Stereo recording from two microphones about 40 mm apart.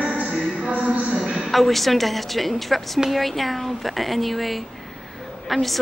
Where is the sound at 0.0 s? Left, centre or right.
Right.